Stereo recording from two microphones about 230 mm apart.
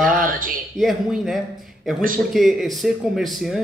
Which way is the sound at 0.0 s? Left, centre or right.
Right.